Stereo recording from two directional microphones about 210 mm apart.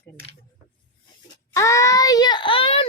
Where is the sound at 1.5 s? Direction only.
15° left (ahead or behind).